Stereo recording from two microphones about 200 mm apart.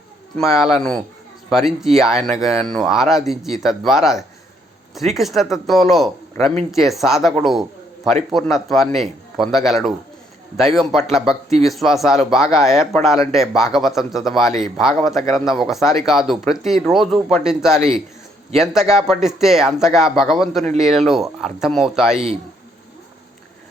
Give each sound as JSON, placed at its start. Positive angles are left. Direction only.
{"t": 0.3, "sound": "speech", "side_deg": 0}